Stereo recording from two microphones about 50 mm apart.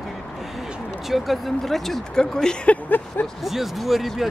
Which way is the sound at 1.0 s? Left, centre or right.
Centre.